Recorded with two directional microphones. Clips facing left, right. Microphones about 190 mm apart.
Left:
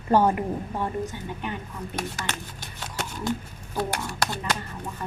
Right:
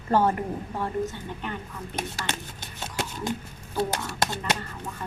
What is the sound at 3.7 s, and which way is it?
Speech, 20° right (ahead or behind).